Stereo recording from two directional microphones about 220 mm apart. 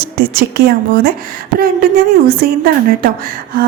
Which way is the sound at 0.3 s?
45° right (ahead or behind).